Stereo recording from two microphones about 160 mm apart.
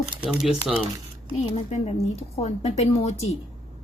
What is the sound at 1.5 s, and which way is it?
Speech, 40° left (ahead or behind).